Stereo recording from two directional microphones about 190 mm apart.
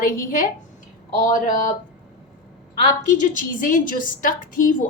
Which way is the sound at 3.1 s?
45° left (ahead or behind).